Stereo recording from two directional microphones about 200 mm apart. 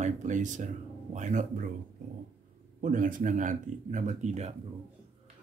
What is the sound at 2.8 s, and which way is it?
Speech, 40° right (ahead or behind).